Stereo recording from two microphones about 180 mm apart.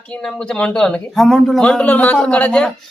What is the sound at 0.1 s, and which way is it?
Speech, 5° left (ahead or behind).